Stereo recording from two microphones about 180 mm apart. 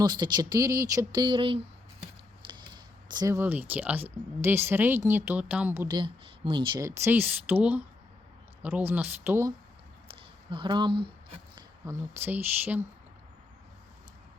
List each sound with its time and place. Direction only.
0.0 s speech: 25° right (ahead or behind)
3.1 s speech: 20° right (ahead or behind)
5.9 s speech: 25° right (ahead or behind)
6.7 s speech: 15° right (ahead or behind)
10.5 s speech: 25° right (ahead or behind)
11.9 s speech: 10° right (ahead or behind)